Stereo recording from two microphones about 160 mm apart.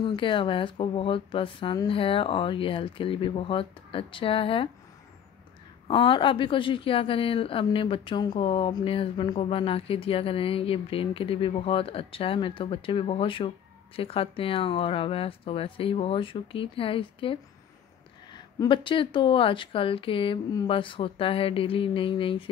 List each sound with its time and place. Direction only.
0.0 s a woman's voice: 30° left (ahead or behind)
5.9 s a woman's voice: 30° left (ahead or behind)